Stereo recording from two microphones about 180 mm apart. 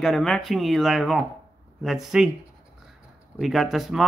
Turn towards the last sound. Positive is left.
turn(degrees=0)  # may be behind; listen again after turning